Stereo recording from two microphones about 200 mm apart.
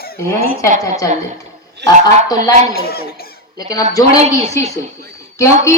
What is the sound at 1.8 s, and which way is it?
Music, 20° left (ahead or behind).